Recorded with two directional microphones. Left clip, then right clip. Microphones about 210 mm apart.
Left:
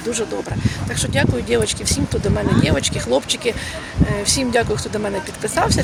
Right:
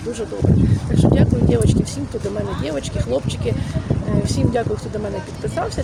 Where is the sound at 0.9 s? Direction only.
5° left (ahead or behind).